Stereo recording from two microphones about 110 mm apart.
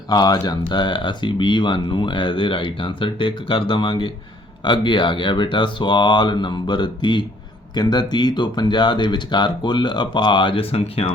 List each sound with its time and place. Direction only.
0.1 s speech: 40° left (ahead or behind); by 11.1 s 60° left (ahead or behind)